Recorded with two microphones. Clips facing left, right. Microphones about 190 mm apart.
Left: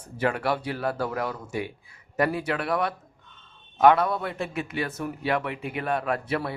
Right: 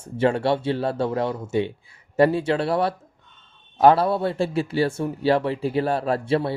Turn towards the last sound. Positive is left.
turn(degrees=-30)  # may be behind; listen again after turning